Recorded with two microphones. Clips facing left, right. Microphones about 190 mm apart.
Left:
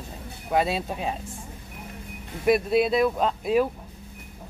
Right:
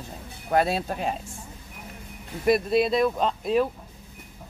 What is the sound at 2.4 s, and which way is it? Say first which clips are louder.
Speech: even; 5° left (ahead or behind).